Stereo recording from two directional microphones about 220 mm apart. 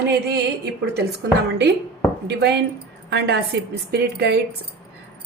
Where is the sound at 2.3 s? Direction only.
50° right (ahead or behind).